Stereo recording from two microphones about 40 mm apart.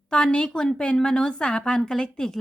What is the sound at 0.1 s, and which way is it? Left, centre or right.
A woman's voice, left.